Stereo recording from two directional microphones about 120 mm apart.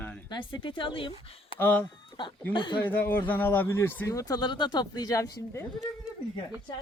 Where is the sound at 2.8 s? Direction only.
15° left (ahead or behind).